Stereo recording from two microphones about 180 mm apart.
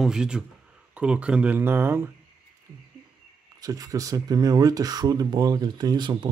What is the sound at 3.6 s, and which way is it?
Speech, 20° right (ahead or behind).